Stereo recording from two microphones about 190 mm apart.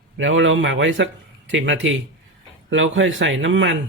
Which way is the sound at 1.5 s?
75° right (ahead or behind).